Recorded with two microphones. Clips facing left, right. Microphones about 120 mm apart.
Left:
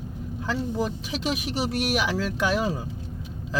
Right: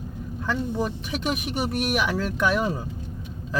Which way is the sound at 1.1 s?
55° right (ahead or behind).